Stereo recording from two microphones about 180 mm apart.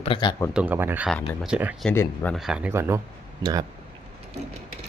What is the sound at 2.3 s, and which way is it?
Speech, 5° right (ahead or behind).